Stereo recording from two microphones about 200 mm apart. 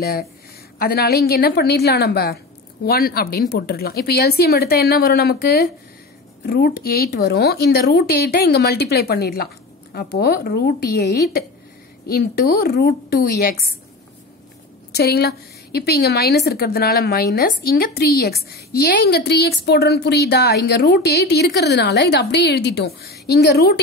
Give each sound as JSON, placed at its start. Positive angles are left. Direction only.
{"t": 0.0, "sound": "a woman's voice", "side_deg": 50}
{"t": 15.0, "sound": "a woman's voice", "side_deg": 55}